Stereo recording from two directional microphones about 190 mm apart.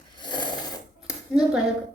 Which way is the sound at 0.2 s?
25° left (ahead or behind).